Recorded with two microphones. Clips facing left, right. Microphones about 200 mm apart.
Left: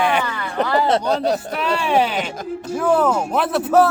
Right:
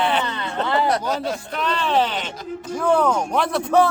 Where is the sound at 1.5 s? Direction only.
10° left (ahead or behind).